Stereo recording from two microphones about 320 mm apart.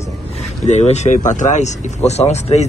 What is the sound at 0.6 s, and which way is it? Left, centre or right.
Speech, left.